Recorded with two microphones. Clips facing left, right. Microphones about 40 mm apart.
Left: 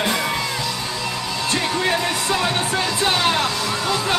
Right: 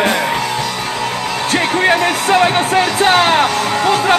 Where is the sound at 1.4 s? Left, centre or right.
Right.